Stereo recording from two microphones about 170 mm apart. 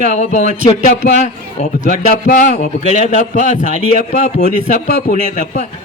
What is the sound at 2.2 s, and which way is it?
Speech, 50° left (ahead or behind).